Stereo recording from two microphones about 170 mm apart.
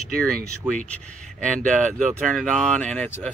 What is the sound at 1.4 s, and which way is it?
Speech, 50° right (ahead or behind).